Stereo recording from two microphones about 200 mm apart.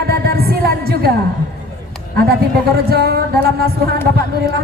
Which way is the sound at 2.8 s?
50° right (ahead or behind).